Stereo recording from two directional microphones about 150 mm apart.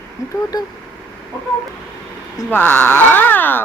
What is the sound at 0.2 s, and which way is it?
Speech, 20° left (ahead or behind).